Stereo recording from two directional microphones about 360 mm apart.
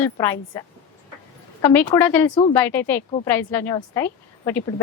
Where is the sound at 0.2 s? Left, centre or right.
Centre.